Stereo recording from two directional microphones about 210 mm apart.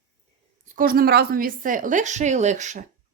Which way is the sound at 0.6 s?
40° right (ahead or behind).